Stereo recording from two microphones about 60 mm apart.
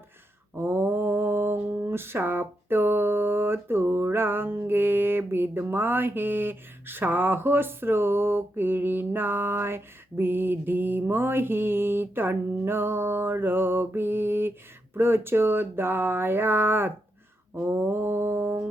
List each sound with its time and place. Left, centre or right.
0.6 s mantra: right